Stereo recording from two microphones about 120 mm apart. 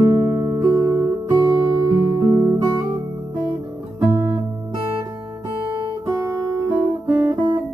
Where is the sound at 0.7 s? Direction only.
20° right (ahead or behind).